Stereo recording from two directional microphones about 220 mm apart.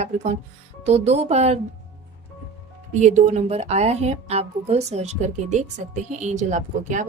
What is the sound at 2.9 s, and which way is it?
A woman's voice, 30° right (ahead or behind).